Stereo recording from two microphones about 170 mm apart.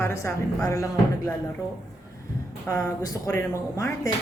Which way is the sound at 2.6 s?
15° left (ahead or behind).